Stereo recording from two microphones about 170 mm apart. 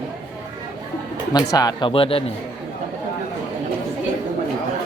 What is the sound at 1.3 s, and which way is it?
Speech, 25° left (ahead or behind).